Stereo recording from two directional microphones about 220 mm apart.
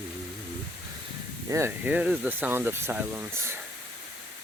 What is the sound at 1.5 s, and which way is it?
Speech, 10° right (ahead or behind).